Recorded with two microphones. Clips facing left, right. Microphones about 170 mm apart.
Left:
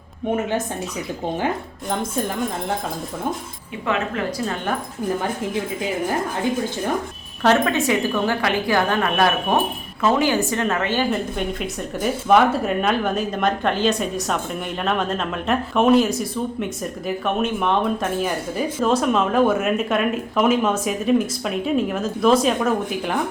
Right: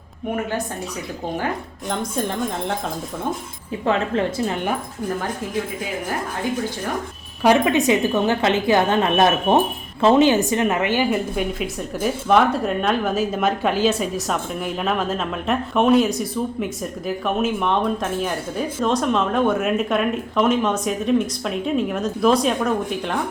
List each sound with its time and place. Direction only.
3.8 s a woman's voice: 30° right (ahead or behind)
7.4 s a woman's voice: 15° right (ahead or behind); by 23.1 s 5° left (ahead or behind)